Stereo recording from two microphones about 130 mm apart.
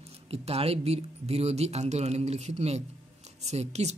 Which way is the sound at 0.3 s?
50° right (ahead or behind).